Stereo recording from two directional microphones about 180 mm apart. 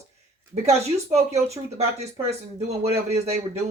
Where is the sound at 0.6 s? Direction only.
35° right (ahead or behind).